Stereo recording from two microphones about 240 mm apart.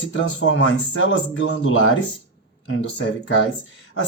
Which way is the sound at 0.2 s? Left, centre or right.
Left.